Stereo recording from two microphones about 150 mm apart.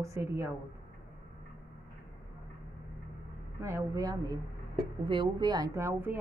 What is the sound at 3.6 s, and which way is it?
A woman's voice, 20° right (ahead or behind).